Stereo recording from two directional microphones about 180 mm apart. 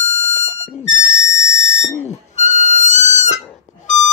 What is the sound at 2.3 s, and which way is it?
Music, 40° left (ahead or behind).